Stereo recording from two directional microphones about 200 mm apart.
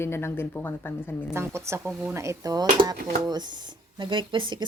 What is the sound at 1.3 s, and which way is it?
A woman's voice, 15° right (ahead or behind).